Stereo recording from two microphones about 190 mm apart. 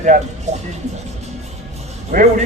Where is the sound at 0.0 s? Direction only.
40° right (ahead or behind).